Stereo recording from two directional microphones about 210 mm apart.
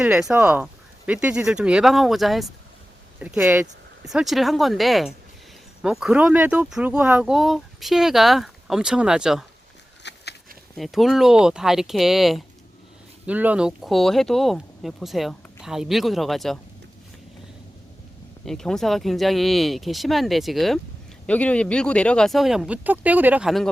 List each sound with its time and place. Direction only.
0.0 s speech: 5° right (ahead or behind)
10.0 s a sound: 55° left (ahead or behind)
10.8 s speech: centre (ahead or behind)
18.4 s speech: centre (ahead or behind)